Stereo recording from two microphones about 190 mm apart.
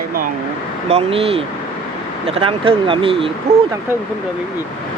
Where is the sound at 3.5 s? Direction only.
60° right (ahead or behind).